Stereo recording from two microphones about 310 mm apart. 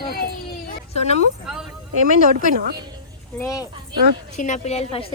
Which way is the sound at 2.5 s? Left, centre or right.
Right.